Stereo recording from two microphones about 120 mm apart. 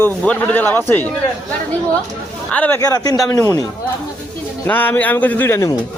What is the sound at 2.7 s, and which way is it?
Speech, 30° left (ahead or behind).